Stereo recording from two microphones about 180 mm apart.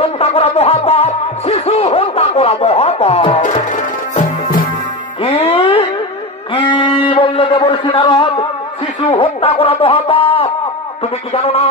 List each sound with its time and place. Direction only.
0.0 s music: 35° left (ahead or behind)
5.2 s music: 35° left (ahead or behind)
6.5 s a sound: 25° left (ahead or behind)
9.1 s speech: 30° left (ahead or behind)